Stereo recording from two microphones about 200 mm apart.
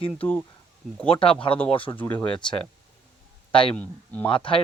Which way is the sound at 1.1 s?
25° left (ahead or behind).